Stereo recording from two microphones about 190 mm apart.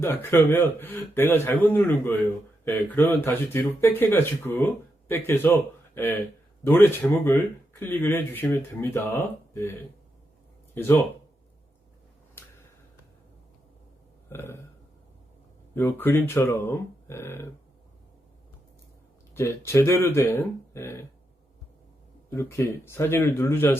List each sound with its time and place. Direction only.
0.0 s speech: 15° left (ahead or behind)
10.8 s speech: 10° left (ahead or behind)
14.3 s burping: 10° left (ahead or behind)
15.7 s speech: 10° left (ahead or behind)
19.3 s speech: 15° left (ahead or behind)
22.3 s speech: 15° left (ahead or behind)